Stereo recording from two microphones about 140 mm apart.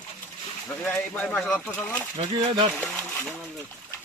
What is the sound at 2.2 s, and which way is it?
Speech, 45° right (ahead or behind).